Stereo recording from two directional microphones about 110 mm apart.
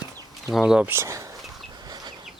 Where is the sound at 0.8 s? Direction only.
25° right (ahead or behind).